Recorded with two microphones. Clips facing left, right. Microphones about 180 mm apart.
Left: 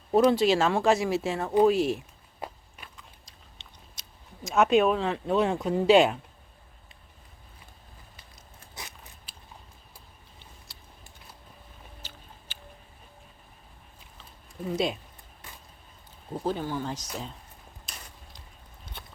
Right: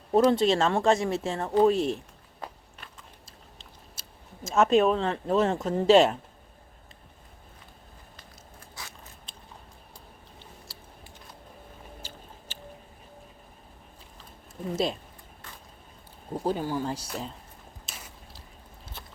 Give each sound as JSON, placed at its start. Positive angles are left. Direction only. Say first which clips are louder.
{"t": 0.1, "sound": "speech", "louder": "even", "side_deg": 0}
{"t": 2.4, "sound": "walk", "louder": "left 2 dB", "side_deg": 10}
{"t": 4.4, "sound": "speech", "louder": "even", "side_deg": 0}
{"t": 8.8, "sound": "biting", "louder": "left 1 dB", "side_deg": 20}
{"t": 14.7, "sound": "speech", "louder": "even", "side_deg": 0}
{"t": 16.3, "sound": "speech", "louder": "right 2 dB", "side_deg": -15}
{"t": 17.8, "sound": "a sound", "louder": "right 1 dB", "side_deg": -5}